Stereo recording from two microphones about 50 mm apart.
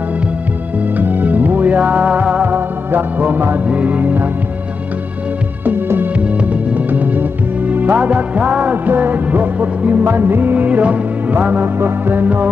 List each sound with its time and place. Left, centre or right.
0.9 s music: right
2.4 s music: right
7.7 s music: right
11.6 s music: right